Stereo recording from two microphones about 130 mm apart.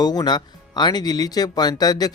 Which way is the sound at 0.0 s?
30° left (ahead or behind).